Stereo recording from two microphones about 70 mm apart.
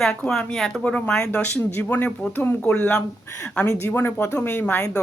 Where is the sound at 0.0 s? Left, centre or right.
Centre.